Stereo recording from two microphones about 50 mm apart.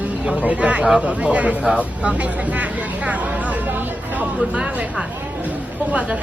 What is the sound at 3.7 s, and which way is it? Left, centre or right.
Speech, right.